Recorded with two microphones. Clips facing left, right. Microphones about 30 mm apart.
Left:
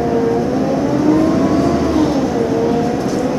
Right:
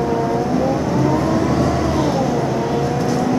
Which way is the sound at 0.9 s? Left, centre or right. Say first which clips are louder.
Left 6 dB; centre.